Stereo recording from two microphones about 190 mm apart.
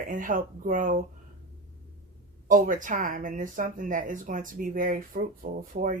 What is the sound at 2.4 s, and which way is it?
Speech, 45° right (ahead or behind).